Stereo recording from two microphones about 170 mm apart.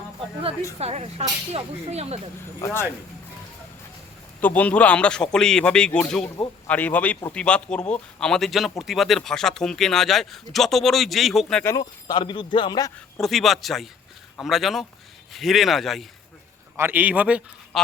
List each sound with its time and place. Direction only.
0.8 s speech: 40° right (ahead or behind)
2.6 s speech: 20° left (ahead or behind)
4.4 s speech: 10° left (ahead or behind)
11.6 s speech: 20° left (ahead or behind)
13.2 s speech: centre (ahead or behind)
16.7 s a man's voice: 10° right (ahead or behind)